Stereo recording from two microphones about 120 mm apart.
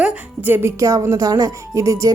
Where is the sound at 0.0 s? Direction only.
15° right (ahead or behind).